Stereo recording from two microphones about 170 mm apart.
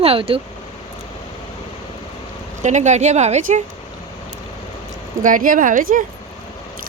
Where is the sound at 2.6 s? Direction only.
45° right (ahead or behind).